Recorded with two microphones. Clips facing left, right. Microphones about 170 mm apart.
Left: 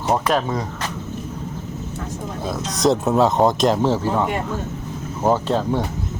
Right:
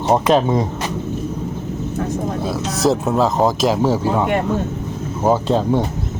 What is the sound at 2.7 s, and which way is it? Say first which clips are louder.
Speech: even; 5° right (ahead or behind).